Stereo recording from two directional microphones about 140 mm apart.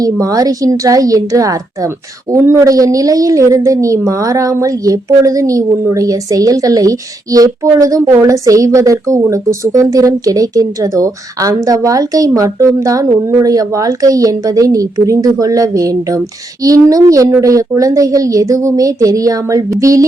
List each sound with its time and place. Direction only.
0.0 s a woman's voice: 25° right (ahead or behind)